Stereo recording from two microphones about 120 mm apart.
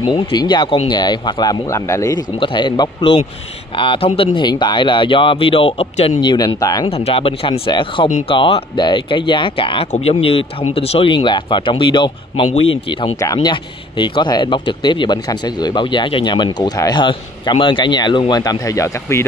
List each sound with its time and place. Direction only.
0.0 s speech: 40° left (ahead or behind)
2.4 s speech: 40° left (ahead or behind)
6.3 s speech: 30° left (ahead or behind)
6.9 s speech: 55° left (ahead or behind)
8.7 s speech: 40° left (ahead or behind)
12.5 s speech: 55° left (ahead or behind)
13.2 s speech: 30° left (ahead or behind)
13.5 s speech: 40° left (ahead or behind); by 19.2 s 25° left (ahead or behind)